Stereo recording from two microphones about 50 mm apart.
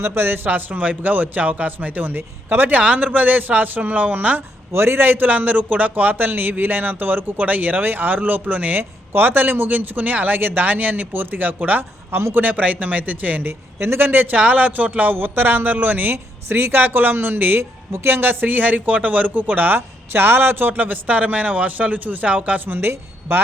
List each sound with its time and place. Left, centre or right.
0.0 s a man's voice: right
2.8 s a man's voice: right
4.7 s a man's voice: right
12.1 s speech: right
12.4 s a man's voice: right
13.4 s a man's voice: right
16.1 s a man's voice: right